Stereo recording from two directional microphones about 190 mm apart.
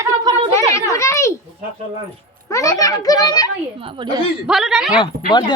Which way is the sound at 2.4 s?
15° left (ahead or behind).